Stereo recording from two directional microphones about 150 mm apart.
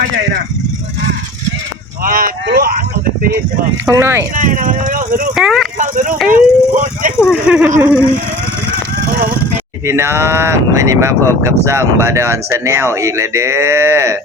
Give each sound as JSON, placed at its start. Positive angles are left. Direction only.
{"t": 2.0, "sound": "a sound", "side_deg": -70}
{"t": 3.8, "sound": "speech", "side_deg": -20}
{"t": 4.4, "sound": "speech", "side_deg": -60}
{"t": 5.3, "sound": "speech", "side_deg": 0}
{"t": 5.8, "sound": "speech", "side_deg": -60}
{"t": 7.3, "sound": "speech", "side_deg": -5}
{"t": 9.8, "sound": "speech", "side_deg": -15}